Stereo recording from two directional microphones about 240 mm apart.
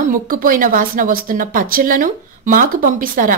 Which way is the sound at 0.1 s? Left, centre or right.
Right.